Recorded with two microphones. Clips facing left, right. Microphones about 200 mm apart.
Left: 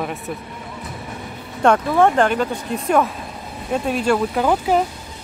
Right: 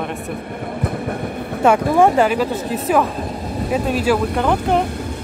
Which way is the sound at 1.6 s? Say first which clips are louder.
Right 2 dB; 10° right (ahead or behind).